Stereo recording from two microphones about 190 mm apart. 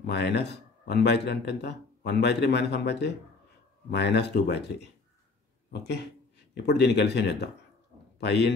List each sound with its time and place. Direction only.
0.0 s speech: 60° left (ahead or behind)